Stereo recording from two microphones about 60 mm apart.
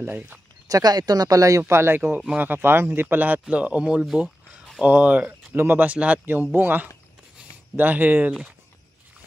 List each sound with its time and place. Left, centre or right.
0.0 s speech: right
0.7 s speech: right
1.6 s speech: right
2.0 s speech: right
3.4 s speech: right
5.5 s speech: right
5.9 s speech: right